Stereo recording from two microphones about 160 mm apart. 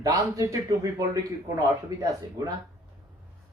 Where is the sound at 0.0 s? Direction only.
20° right (ahead or behind).